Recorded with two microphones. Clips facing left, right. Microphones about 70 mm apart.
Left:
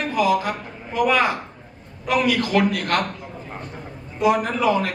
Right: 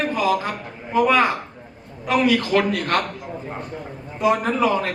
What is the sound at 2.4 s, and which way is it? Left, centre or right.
Speech, right.